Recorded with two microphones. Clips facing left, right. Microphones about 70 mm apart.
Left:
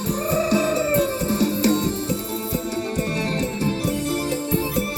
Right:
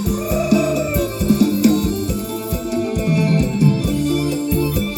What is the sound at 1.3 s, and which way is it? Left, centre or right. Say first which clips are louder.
Music: right 8 dB; left.